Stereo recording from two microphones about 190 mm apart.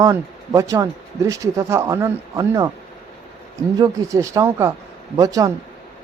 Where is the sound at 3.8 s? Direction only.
15° right (ahead or behind).